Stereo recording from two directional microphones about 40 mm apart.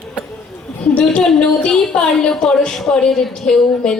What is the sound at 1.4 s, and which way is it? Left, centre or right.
Speech, left.